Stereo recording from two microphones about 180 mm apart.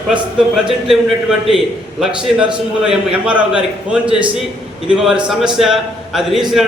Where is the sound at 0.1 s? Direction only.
Centre (ahead or behind).